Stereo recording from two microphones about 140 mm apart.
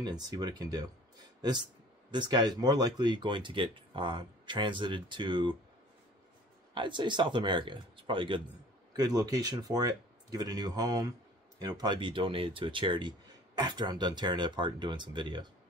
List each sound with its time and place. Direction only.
0.0 s speech: 30° right (ahead or behind)
2.0 s speech: 30° right (ahead or behind)
6.7 s speech: 35° right (ahead or behind)